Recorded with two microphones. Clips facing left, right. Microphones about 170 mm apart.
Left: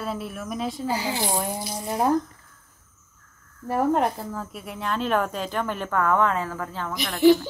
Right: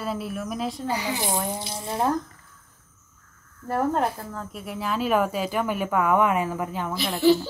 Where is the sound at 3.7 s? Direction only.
15° left (ahead or behind).